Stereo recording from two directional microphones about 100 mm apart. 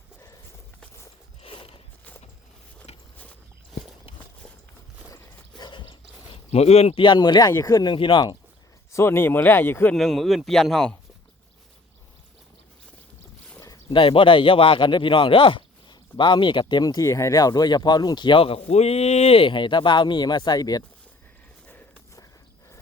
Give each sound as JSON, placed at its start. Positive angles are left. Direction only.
{"t": 1.4, "sound": "a sound", "side_deg": 70}
{"t": 2.9, "sound": "a sound", "side_deg": 90}
{"t": 5.1, "sound": "a sound", "side_deg": 45}
{"t": 7.0, "sound": "speech", "side_deg": 50}
{"t": 7.5, "sound": "speech", "side_deg": 35}
{"t": 7.9, "sound": "speech", "side_deg": 60}
{"t": 8.9, "sound": "speech", "side_deg": 25}
{"t": 9.9, "sound": "a man's voice", "side_deg": 0}
{"t": 13.9, "sound": "speech", "side_deg": 60}
{"t": 18.7, "sound": "speech", "side_deg": 90}